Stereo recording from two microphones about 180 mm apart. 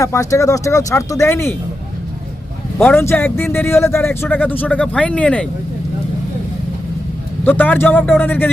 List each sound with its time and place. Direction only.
0.0 s speech: 15° left (ahead or behind)
2.7 s speech: 15° left (ahead or behind)
7.4 s speech: 10° left (ahead or behind)